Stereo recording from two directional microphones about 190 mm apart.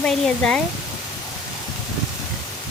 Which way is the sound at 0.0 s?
5° left (ahead or behind).